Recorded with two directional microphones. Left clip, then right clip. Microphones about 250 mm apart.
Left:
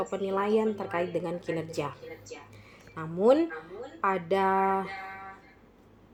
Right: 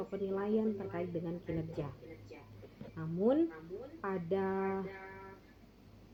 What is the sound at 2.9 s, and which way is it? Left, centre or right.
A woman's voice, left.